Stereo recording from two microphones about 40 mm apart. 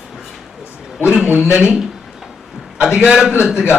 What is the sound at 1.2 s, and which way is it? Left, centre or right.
A man's voice, right.